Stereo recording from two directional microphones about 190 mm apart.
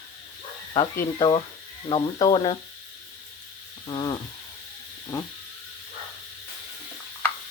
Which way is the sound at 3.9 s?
25° left (ahead or behind).